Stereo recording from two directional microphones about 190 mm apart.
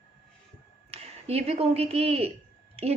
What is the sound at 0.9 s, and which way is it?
A woman's voice, 30° right (ahead or behind).